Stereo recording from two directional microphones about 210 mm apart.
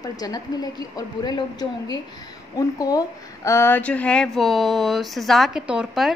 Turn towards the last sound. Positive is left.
turn(degrees=-5)  # may be behind; listen again after turning